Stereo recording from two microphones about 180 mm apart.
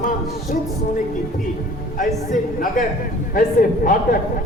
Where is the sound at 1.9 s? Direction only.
45° left (ahead or behind).